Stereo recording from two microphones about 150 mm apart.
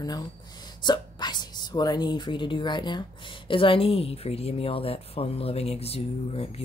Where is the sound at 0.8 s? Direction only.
30° left (ahead or behind).